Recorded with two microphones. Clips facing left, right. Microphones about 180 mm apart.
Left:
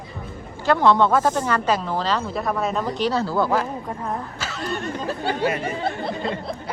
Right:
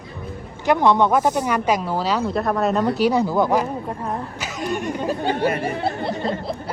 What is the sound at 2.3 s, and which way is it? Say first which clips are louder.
Speech: right 4 dB; centre (ahead or behind).